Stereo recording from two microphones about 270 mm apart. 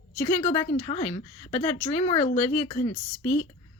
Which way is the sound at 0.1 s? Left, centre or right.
Centre.